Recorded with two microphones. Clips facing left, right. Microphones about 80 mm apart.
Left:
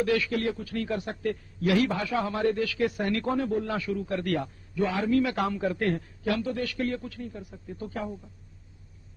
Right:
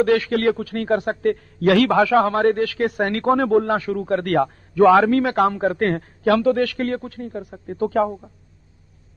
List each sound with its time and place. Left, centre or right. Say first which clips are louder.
0.0 s a man's voice: right 9 dB; right
3.7 s a man's voice: right 9 dB; right
5.2 s a man's voice: right 9 dB; right